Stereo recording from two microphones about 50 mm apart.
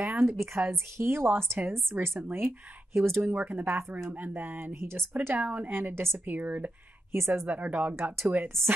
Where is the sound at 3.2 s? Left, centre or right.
Right.